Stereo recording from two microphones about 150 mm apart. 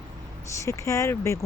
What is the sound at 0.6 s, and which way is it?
Speech, 20° left (ahead or behind).